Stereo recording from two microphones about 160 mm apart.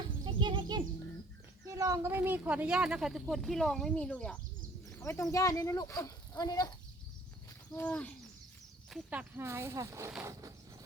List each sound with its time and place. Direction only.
0.3 s bird: 30° right (ahead or behind)
1.6 s speech: 20° right (ahead or behind); by 4.4 s 5° left (ahead or behind)
4.9 s speech: 15° left (ahead or behind)
7.8 s owl: 10° left (ahead or behind)
8.9 s speech: 10° right (ahead or behind)